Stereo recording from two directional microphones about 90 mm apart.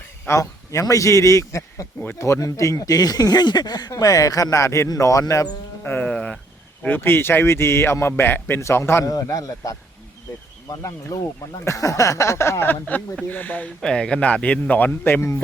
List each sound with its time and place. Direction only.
0.3 s a man's voice: 35° left (ahead or behind)
5.8 s speech: 20° left (ahead or behind)
6.8 s a man's voice: 25° left (ahead or behind)
9.0 s a man's voice: 40° left (ahead or behind)
12.8 s speech: 15° left (ahead or behind); by 15.4 s 30° left (ahead or behind)